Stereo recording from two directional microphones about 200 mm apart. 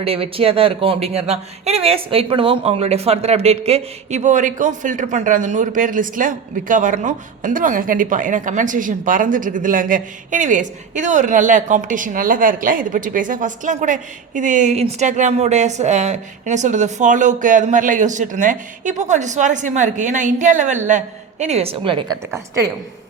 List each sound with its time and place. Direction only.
0.0 s speech: 30° right (ahead or behind)
22.3 s a woman's voice: 15° right (ahead or behind)